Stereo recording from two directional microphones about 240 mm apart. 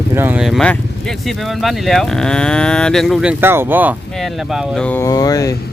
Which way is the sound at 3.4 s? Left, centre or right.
Centre.